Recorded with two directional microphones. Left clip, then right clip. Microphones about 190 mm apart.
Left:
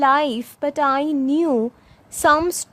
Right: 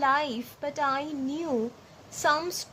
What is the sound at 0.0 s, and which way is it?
Speech, 50° left (ahead or behind).